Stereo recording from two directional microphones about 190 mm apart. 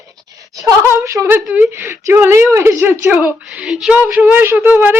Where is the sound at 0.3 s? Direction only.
20° right (ahead or behind).